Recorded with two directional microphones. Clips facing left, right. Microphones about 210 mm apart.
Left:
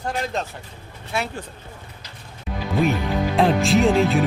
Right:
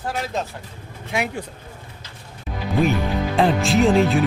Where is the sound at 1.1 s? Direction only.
15° right (ahead or behind).